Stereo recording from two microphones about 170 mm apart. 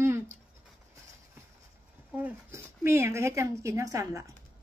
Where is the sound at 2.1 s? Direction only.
10° right (ahead or behind).